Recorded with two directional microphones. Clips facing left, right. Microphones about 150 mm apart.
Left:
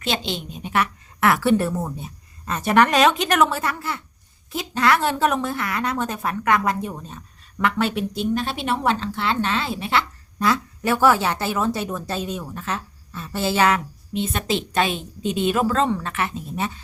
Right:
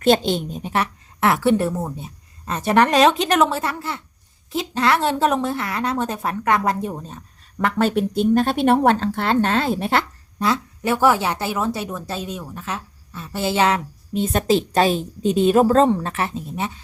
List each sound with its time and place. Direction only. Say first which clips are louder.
0.0 s a woman's voice: right 9 dB; 50° right (ahead or behind)
10.4 s a woman's voice: even; 20° right (ahead or behind)
14.1 s a woman's voice: right 5 dB; 40° right (ahead or behind)